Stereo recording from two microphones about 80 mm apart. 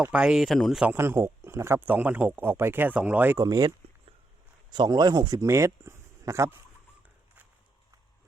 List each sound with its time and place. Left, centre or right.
0.0 s speech: centre
0.9 s a man's voice: right
3.3 s speech: right
4.9 s speech: right
5.4 s speech: right